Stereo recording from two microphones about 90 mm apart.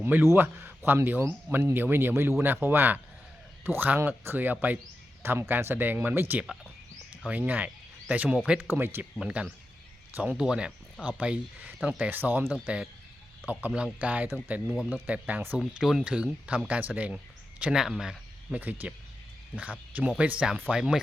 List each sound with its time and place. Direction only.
0.0 s speech: 25° right (ahead or behind)
9.2 s speech: 15° right (ahead or behind)
12.6 s speech: 10° right (ahead or behind)
15.0 s speech: 15° right (ahead or behind)
15.5 s speech: 10° right (ahead or behind)
18.6 s speech: 20° right (ahead or behind)